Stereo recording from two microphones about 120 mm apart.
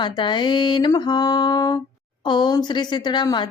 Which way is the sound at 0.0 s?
40° left (ahead or behind).